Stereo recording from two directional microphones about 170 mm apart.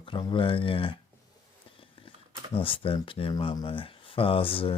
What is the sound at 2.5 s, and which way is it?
Speech, 30° left (ahead or behind).